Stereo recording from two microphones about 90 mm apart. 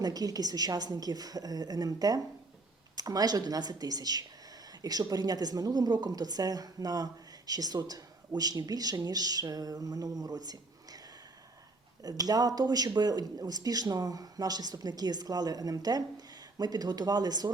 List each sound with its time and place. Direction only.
0.0 s a woman's voice: 45° right (ahead or behind)
12.0 s a woman's voice: 45° right (ahead or behind)